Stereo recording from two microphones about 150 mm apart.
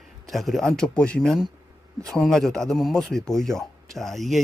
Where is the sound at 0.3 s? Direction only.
Centre (ahead or behind).